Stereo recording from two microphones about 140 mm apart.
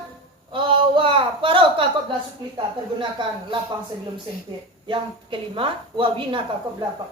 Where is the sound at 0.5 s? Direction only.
35° right (ahead or behind).